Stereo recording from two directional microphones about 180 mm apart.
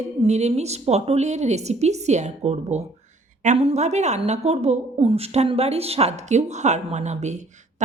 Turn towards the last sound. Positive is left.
turn(degrees=-40)  # may be behind; listen again after turning